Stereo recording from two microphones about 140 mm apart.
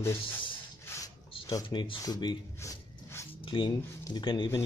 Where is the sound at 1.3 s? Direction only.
40° left (ahead or behind).